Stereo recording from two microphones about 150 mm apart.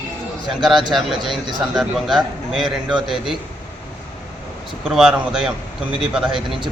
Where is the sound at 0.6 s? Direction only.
Centre (ahead or behind).